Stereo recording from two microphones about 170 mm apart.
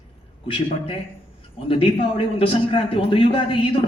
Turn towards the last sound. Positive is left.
turn(degrees=30)  # may be behind; listen again after turning